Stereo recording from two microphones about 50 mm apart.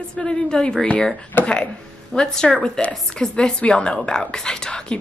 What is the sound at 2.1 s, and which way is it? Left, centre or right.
A woman's voice, centre.